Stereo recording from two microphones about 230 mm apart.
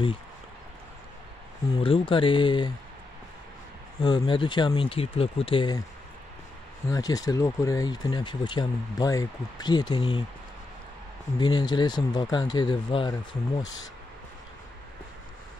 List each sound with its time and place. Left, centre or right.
1.8 s speech: left
4.0 s speech: centre
6.9 s speech: centre
11.3 s speech: centre